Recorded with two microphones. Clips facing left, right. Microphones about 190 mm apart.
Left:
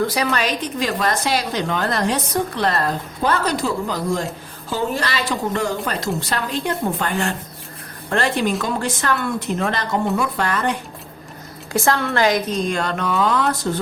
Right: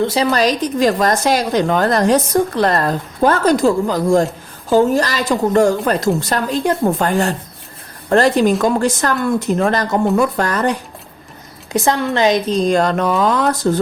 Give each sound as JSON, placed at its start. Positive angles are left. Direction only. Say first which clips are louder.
{"t": 0.0, "sound": "a woman's voice", "louder": "right 5 dB", "side_deg": -25}
{"t": 11.7, "sound": "speech", "louder": "right 3 dB", "side_deg": -20}
{"t": 12.5, "sound": "speech", "louder": "right 7 dB", "side_deg": -40}